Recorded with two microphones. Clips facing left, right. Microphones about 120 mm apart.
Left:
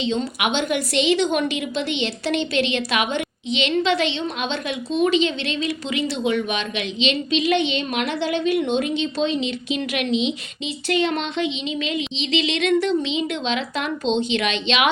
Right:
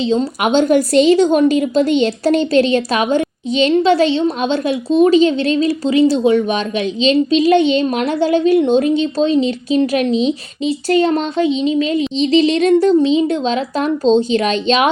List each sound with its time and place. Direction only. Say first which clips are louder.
0.0 s a woman's voice: right 7 dB; 35° right (ahead or behind)